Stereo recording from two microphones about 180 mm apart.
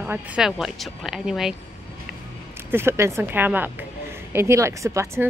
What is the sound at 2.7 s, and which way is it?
Speech, 15° right (ahead or behind).